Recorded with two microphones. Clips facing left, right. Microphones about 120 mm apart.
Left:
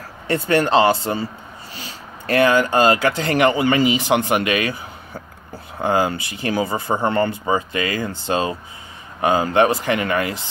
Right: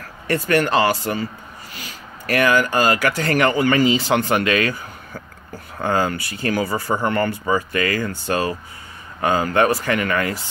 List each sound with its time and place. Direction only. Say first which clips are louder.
0.3 s speech: left 1 dB; 20° left (ahead or behind)